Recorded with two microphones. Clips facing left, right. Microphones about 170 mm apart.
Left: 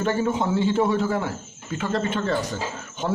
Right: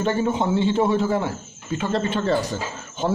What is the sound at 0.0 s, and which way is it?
A man's voice, 25° right (ahead or behind).